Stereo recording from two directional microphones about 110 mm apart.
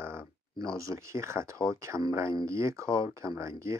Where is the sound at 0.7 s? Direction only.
25° right (ahead or behind).